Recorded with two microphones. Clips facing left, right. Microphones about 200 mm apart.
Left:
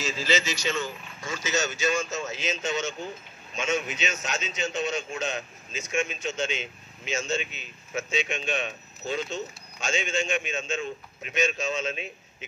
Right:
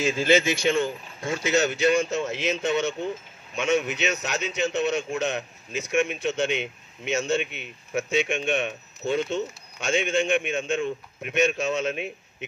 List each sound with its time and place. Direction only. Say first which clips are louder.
0.0 s speech: right 7 dB; 55° right (ahead or behind)